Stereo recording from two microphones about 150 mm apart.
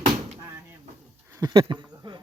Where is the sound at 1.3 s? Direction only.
30° right (ahead or behind).